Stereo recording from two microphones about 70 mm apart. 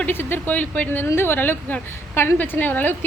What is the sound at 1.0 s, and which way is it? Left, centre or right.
A woman's voice, left.